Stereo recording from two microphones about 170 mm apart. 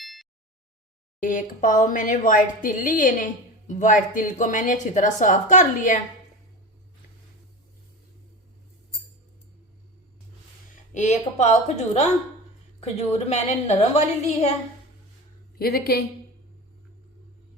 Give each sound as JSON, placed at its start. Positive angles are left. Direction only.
{"t": 0.0, "sound": "a sound", "side_deg": 0}
{"t": 1.2, "sound": "a woman's voice", "side_deg": 50}
{"t": 10.9, "sound": "a woman's voice", "side_deg": 45}
{"t": 15.5, "sound": "a woman's voice", "side_deg": 65}